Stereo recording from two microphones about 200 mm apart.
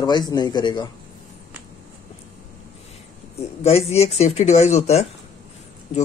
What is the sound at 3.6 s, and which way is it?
Speech, 30° left (ahead or behind).